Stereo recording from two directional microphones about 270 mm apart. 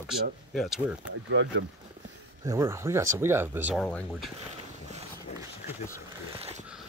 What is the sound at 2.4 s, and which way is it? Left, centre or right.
Speech, centre.